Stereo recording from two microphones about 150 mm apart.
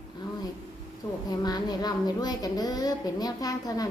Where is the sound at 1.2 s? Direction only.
25° left (ahead or behind).